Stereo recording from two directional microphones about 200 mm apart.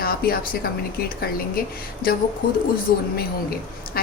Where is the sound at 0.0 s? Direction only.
50° left (ahead or behind).